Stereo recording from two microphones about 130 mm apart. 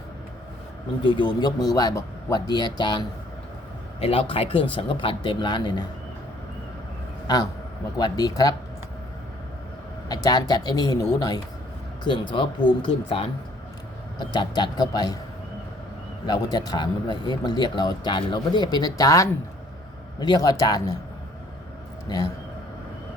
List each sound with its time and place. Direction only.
1.0 s speech: 35° left (ahead or behind)
4.0 s speech: 45° left (ahead or behind)
7.9 s speech: 30° left (ahead or behind)
10.1 s speech: 30° left (ahead or behind)
16.2 s speech: 30° left (ahead or behind)
22.1 s speech: 35° left (ahead or behind)